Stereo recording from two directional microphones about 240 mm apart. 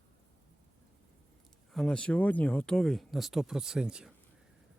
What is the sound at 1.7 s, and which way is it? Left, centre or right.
Speech, centre.